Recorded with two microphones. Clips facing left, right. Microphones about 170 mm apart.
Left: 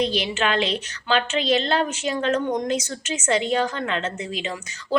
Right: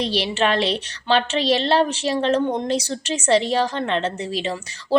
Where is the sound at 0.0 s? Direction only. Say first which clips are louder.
Right 2 dB; 35° right (ahead or behind).